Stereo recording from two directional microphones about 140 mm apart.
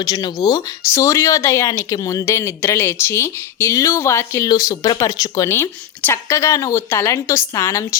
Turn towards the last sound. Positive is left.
turn(degrees=20)  # may be behind; listen again after turning